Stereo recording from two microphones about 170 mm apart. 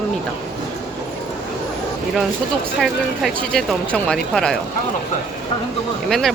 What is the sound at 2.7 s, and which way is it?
Speech, centre (ahead or behind).